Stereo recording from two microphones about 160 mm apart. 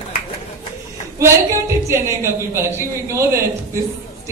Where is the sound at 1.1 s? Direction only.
15° right (ahead or behind).